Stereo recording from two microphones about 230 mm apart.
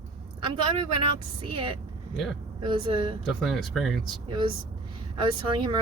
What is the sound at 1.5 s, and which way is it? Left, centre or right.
Speech, right.